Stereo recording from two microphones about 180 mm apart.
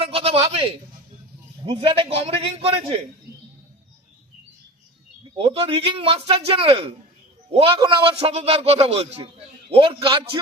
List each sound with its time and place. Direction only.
0.0 s a sound: 30° right (ahead or behind)
1.6 s speech: 30° right (ahead or behind)
5.4 s a man's voice: 30° right (ahead or behind)